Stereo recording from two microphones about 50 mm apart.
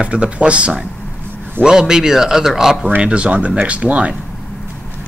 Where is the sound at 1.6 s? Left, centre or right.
Centre.